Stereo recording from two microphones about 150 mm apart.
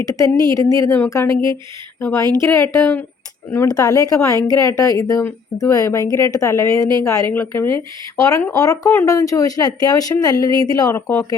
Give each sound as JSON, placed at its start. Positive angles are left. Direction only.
{"t": 0.1, "sound": "a woman's voice", "side_deg": 25}